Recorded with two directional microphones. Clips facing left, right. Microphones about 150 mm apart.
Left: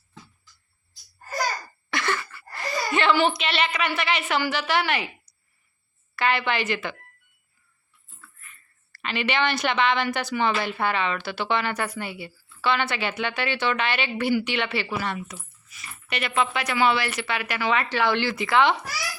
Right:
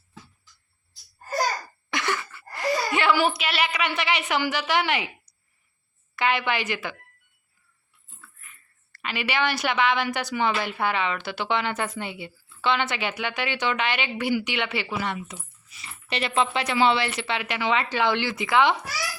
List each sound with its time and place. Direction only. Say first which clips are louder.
1.9 s a woman's voice: left 1 dB; 15° right (ahead or behind)
8.4 s a woman's voice: left 1 dB; 15° right (ahead or behind)